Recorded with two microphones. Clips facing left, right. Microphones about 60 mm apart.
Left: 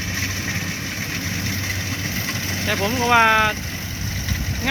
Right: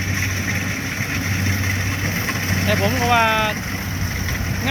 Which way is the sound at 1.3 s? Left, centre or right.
Right.